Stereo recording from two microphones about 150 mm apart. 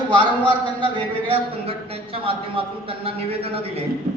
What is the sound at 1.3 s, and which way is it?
A man's voice, 40° right (ahead or behind).